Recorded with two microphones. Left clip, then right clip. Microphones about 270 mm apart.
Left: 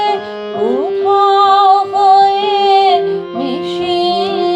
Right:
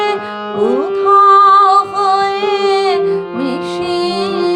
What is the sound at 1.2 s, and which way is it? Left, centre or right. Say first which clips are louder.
Music: right 3 dB; centre.